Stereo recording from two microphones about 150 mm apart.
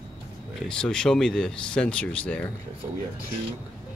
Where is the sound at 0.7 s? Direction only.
5° left (ahead or behind).